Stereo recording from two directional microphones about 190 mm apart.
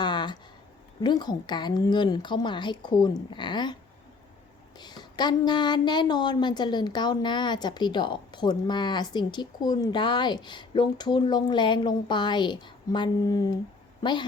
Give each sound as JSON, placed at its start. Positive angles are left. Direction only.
{"t": 0.0, "sound": "a sound", "side_deg": 25}
{"t": 1.0, "sound": "a woman's voice", "side_deg": 20}
{"t": 4.8, "sound": "a woman's voice", "side_deg": 20}